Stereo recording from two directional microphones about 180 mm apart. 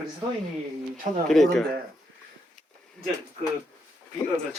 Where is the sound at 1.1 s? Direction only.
40° right (ahead or behind).